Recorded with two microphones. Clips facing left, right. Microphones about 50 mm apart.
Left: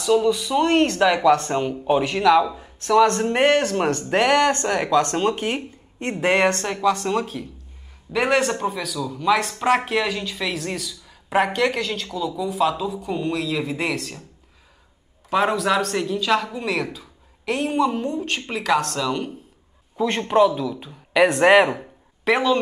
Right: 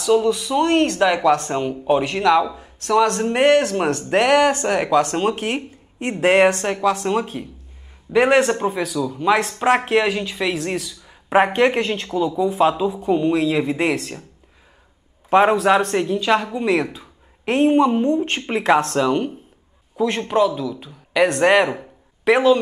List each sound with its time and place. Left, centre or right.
0.2 s a man's voice: centre
11.2 s speech: right
12.8 s speech: centre
15.2 s speech: right
17.0 s speech: right
20.0 s a man's voice: centre
21.7 s a sound: centre